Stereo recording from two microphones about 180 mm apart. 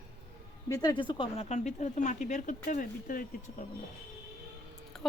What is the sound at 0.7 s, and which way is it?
Speech, 20° left (ahead or behind).